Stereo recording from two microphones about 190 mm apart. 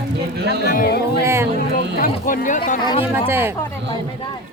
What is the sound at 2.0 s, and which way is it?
Speech, 50° left (ahead or behind).